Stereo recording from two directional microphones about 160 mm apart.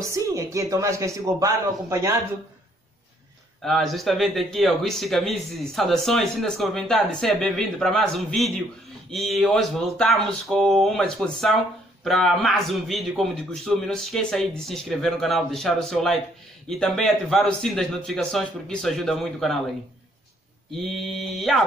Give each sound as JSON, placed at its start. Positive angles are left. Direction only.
{"t": 0.1, "sound": "speech", "side_deg": -20}
{"t": 3.6, "sound": "speech", "side_deg": 0}
{"t": 20.7, "sound": "speech", "side_deg": 0}